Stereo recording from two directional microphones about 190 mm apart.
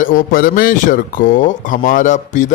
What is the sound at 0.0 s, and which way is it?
A man's voice, 45° left (ahead or behind).